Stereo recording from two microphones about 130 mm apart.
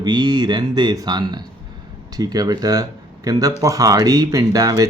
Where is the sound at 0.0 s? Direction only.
35° right (ahead or behind).